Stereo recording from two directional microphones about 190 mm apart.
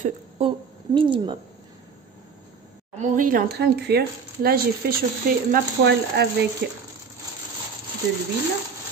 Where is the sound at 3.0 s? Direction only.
45° right (ahead or behind).